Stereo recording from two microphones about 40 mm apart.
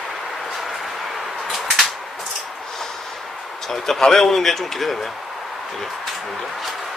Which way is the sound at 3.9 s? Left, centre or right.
Centre.